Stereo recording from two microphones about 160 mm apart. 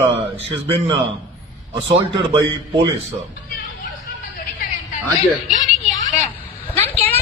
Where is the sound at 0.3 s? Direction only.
30° right (ahead or behind).